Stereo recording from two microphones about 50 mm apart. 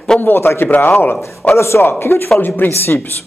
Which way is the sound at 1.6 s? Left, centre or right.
Left.